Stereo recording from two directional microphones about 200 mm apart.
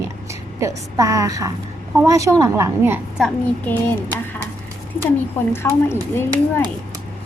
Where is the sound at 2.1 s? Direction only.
15° right (ahead or behind).